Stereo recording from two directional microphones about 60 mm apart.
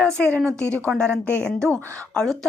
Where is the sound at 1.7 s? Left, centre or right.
Right.